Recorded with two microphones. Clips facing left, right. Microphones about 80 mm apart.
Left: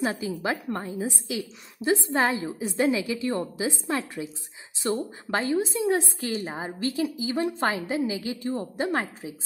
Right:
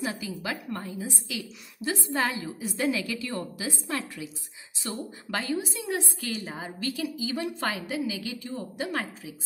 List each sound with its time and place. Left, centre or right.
0.0 s a woman's voice: left